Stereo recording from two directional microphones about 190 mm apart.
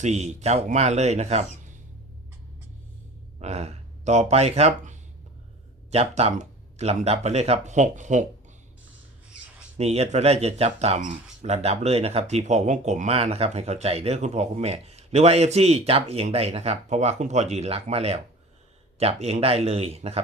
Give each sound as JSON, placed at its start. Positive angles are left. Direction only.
{"t": 0.0, "sound": "speech", "side_deg": -35}
{"t": 3.4, "sound": "speech", "side_deg": -35}
{"t": 9.7, "sound": "speech", "side_deg": -35}